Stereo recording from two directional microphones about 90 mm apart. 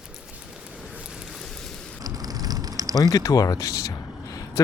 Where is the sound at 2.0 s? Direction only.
45° right (ahead or behind).